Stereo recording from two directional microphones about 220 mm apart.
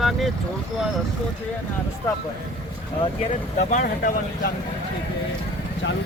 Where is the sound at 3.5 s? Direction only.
35° left (ahead or behind).